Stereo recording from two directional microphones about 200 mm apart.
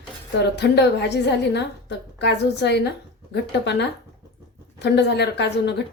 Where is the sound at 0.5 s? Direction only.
55° left (ahead or behind).